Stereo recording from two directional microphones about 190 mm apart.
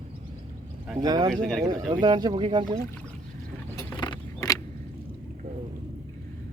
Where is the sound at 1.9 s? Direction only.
20° right (ahead or behind).